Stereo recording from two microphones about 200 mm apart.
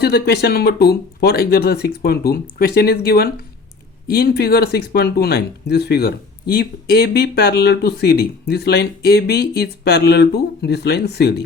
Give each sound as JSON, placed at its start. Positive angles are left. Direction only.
{"t": 0.0, "sound": "speech", "side_deg": 55}